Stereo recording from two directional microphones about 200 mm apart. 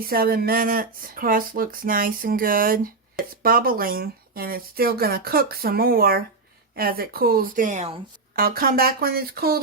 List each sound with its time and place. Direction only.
0.0 s speech: 50° right (ahead or behind)
8.4 s speech: 45° right (ahead or behind)